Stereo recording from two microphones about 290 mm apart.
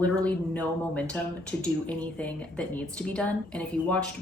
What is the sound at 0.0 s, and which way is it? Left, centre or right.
Speech, centre.